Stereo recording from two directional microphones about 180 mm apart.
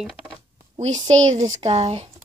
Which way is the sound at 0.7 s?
40° right (ahead or behind).